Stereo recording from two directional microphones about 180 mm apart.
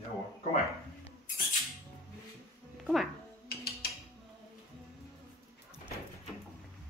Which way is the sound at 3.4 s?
60° left (ahead or behind).